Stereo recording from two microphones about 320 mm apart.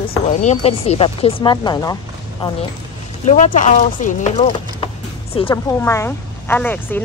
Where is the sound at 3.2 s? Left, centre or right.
Left; by 7.0 s centre.